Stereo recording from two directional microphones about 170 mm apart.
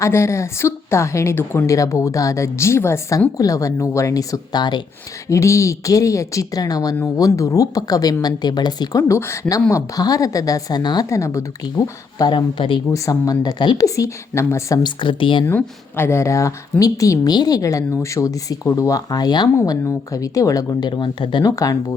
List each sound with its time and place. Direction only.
0.0 s a woman's voice: 15° left (ahead or behind)
15.4 s a woman's voice: 15° left (ahead or behind)